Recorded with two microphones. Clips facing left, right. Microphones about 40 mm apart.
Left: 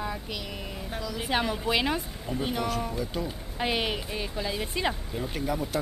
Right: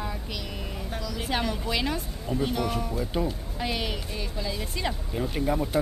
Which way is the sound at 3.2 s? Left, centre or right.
Centre.